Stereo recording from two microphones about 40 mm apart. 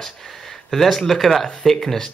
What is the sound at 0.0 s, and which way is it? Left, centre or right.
Speech, centre.